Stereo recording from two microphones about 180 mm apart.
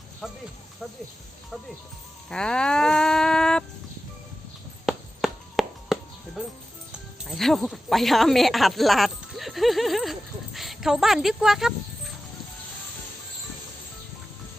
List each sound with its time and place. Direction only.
0.2 s speech: centre (ahead or behind)
2.3 s livestock: 5° left (ahead or behind)
4.9 s music: centre (ahead or behind)
7.3 s speech: centre (ahead or behind)